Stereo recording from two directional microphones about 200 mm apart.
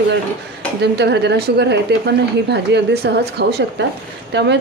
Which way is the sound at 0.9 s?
55° right (ahead or behind).